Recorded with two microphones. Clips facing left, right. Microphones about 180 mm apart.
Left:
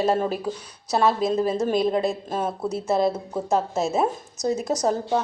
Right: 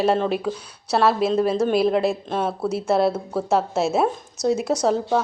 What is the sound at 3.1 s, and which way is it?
Speech, 20° left (ahead or behind).